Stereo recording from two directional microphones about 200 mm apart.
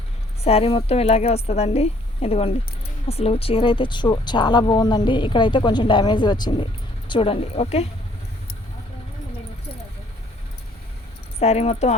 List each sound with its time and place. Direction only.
0.4 s a woman's voice: 30° left (ahead or behind)
11.3 s a woman's voice: 30° left (ahead or behind)